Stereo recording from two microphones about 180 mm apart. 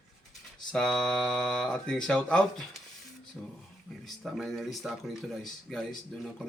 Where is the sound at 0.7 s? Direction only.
5° left (ahead or behind).